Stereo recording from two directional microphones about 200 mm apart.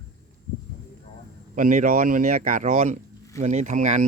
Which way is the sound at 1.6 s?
40° right (ahead or behind).